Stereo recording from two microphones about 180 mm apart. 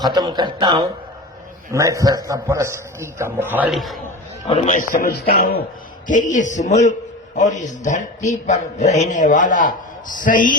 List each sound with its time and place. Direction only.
0.0 s a man's voice: 25° right (ahead or behind); by 3.9 s centre (ahead or behind)
4.4 s a man's voice: 40° left (ahead or behind); by 5.6 s 55° left (ahead or behind)
6.1 s a man's voice: 45° left (ahead or behind)